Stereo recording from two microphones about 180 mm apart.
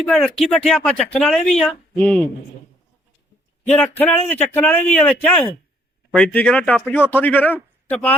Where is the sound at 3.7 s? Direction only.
10° left (ahead or behind).